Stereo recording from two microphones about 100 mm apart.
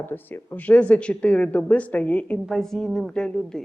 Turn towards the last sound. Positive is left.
turn(degrees=5)  # may be behind; listen again after turning